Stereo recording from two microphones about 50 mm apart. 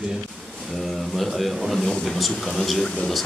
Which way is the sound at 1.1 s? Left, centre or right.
Centre.